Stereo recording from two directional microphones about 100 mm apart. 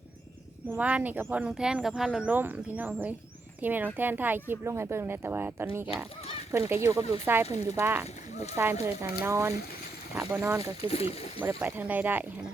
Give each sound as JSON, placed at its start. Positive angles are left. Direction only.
{"t": 0.7, "sound": "speech", "side_deg": -15}
{"t": 2.3, "sound": "speech", "side_deg": -20}
{"t": 10.8, "sound": "speech", "side_deg": 85}
{"t": 11.4, "sound": "speech", "side_deg": -15}